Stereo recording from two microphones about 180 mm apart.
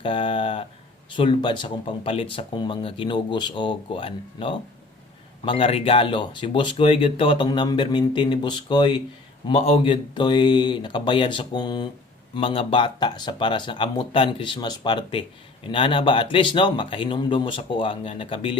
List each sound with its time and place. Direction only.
0.0 s speech: 30° left (ahead or behind)